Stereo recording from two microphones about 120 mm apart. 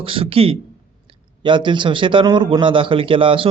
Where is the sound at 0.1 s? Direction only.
50° right (ahead or behind).